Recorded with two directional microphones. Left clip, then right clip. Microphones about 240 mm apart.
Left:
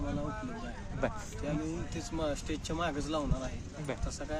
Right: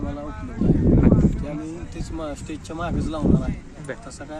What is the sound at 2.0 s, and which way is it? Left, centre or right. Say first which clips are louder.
Speech: right 3 dB; centre.